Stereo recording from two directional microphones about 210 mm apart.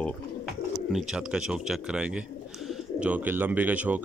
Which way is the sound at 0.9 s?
5° right (ahead or behind).